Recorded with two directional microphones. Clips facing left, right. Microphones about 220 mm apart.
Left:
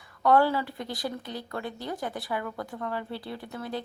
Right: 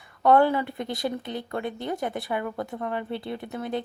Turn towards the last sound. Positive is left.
turn(degrees=-20)  # may be behind; listen again after turning